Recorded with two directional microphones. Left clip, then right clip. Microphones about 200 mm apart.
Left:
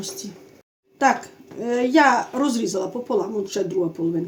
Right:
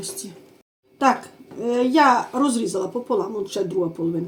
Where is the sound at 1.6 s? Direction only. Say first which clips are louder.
Even; 20° left (ahead or behind).